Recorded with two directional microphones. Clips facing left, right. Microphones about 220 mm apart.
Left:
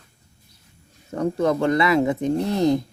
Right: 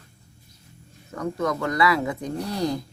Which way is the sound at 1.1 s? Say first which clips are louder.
Left 5 dB; 30° left (ahead or behind).